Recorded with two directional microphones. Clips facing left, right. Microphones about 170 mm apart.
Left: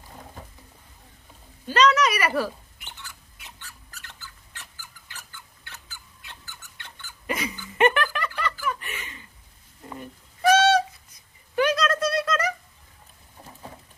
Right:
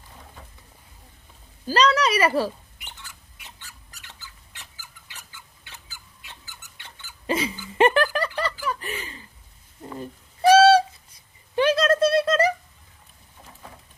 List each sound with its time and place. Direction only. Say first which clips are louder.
1.6 s a woman's voice: even; 35° right (ahead or behind)
2.8 s bird: left 1 dB; 10° right (ahead or behind)
4.8 s a sound: left 1 dB; 10° right (ahead or behind)
7.3 s hiccup: right 4 dB; 30° right (ahead or behind)
7.8 s music: right 3 dB; 30° right (ahead or behind)
8.6 s snicker: right 1 dB; 35° right (ahead or behind)
10.5 s a sound: right 5 dB; 30° right (ahead or behind)